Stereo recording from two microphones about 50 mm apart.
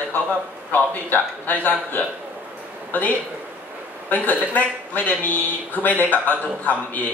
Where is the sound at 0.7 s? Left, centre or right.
Left.